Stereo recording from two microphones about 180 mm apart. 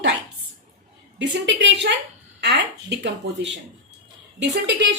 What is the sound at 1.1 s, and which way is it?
Speech, 85° right.